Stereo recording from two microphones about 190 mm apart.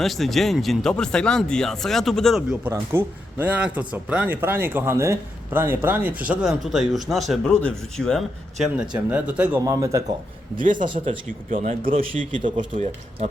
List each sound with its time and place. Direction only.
0.0 s speech: centre (ahead or behind); by 10.0 s 15° right (ahead or behind)
10.6 s speech: 45° right (ahead or behind)
10.8 s speech: 25° right (ahead or behind)
11.5 s speech: 45° right (ahead or behind)
11.9 s speech: 30° right (ahead or behind)